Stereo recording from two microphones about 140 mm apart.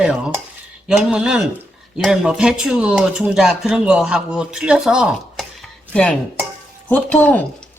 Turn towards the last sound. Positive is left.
turn(degrees=10)  # may be behind; listen again after turning